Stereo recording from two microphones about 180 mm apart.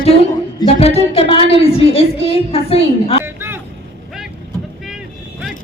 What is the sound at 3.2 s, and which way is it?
Vehicle, 10° right (ahead or behind).